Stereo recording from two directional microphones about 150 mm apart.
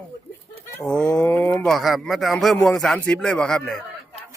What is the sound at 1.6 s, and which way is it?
A man's voice, centre (ahead or behind).